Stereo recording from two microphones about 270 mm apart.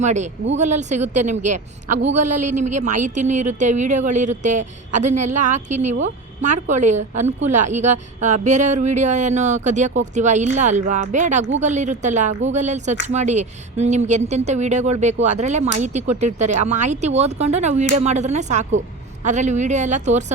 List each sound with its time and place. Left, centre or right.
0.0 s speech: right